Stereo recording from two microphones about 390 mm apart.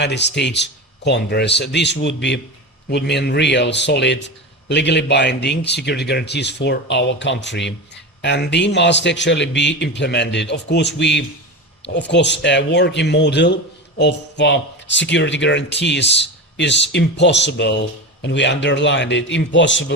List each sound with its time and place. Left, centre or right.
0.0 s speech: left